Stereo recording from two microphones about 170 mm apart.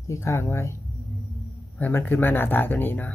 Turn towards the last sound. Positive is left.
turn(degrees=10)  # may be behind; listen again after turning